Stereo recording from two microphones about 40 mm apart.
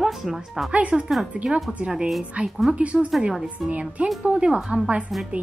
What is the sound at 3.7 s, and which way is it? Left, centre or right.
Speech, right.